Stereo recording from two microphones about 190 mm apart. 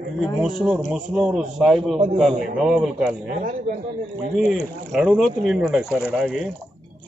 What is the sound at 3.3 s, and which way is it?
Speech, 45° right (ahead or behind).